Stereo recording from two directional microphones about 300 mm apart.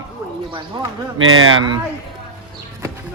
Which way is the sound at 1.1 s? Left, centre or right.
Right.